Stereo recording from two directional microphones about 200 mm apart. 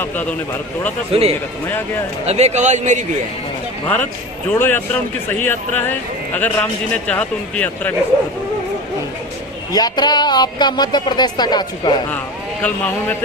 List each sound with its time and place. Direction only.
0.0 s a man's voice: 10° left (ahead or behind)
1.1 s speech: 30° right (ahead or behind)
3.8 s a man's voice: 10° left (ahead or behind)
9.7 s speech: 20° left (ahead or behind)